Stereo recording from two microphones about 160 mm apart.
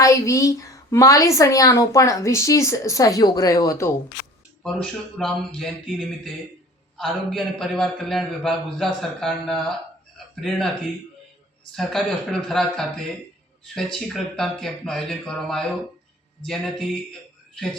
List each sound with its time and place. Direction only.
0.0 s a woman's voice: 20° left (ahead or behind)
4.6 s a man's voice: 5° left (ahead or behind)
11.8 s a man's voice: centre (ahead or behind)